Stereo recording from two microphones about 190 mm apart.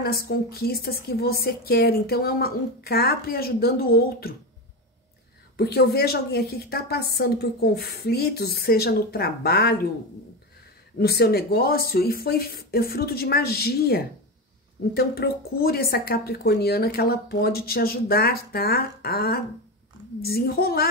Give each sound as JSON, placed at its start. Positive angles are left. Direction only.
{"t": 0.0, "sound": "speech", "side_deg": 50}
{"t": 5.6, "sound": "a woman's voice", "side_deg": 55}
{"t": 11.0, "sound": "speech", "side_deg": 55}